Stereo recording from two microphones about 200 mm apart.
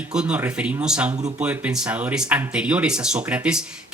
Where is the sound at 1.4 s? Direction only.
5° right (ahead or behind).